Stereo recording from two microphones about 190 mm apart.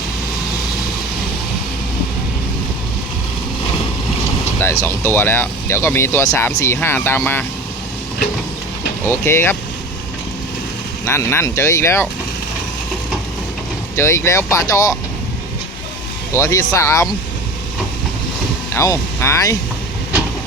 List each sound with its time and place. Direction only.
4.6 s speech: 15° left (ahead or behind)
9.0 s speech: 15° left (ahead or behind)
11.0 s speech: 15° left (ahead or behind)
13.9 s speech: 15° left (ahead or behind)
16.3 s speech: 15° left (ahead or behind)
18.7 s speech: 15° left (ahead or behind)